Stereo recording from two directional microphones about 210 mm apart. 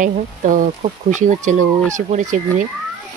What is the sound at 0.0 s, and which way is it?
Speech, 40° right (ahead or behind).